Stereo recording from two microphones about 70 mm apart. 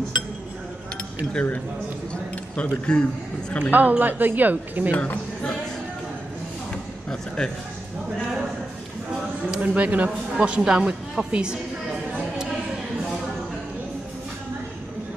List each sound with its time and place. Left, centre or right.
1.3 s a man's voice: centre
3.7 s speech: right
4.9 s speech: left
7.1 s a man's voice: centre
9.6 s speech: centre